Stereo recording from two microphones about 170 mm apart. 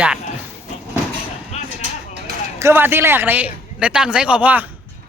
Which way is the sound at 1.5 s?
40° left (ahead or behind).